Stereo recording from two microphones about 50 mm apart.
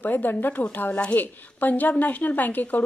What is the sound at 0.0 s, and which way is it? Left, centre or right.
A woman's voice, left.